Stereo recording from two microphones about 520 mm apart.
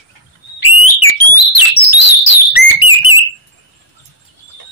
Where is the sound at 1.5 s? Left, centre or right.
Left.